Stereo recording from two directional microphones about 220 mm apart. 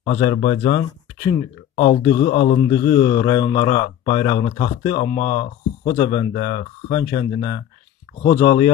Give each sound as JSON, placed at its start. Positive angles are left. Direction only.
{"t": 0.0, "sound": "speech", "side_deg": 35}
{"t": 1.8, "sound": "speech", "side_deg": 25}
{"t": 7.3, "sound": "speech", "side_deg": 40}
{"t": 8.2, "sound": "speech", "side_deg": 25}